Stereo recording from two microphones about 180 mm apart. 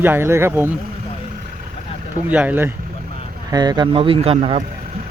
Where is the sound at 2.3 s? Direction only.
10° right (ahead or behind).